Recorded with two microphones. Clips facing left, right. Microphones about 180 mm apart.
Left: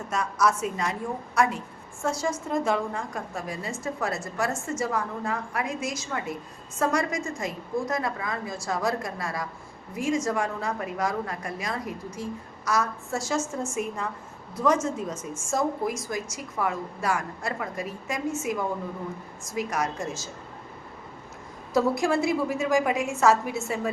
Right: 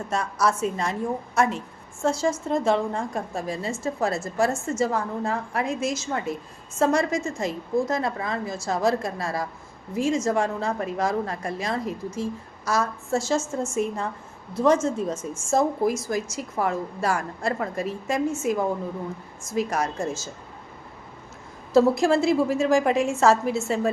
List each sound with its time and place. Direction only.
0.1 s a woman's voice: 30° right (ahead or behind)
19.5 s a woman's voice: 30° right (ahead or behind)
21.7 s a woman's voice: 25° right (ahead or behind)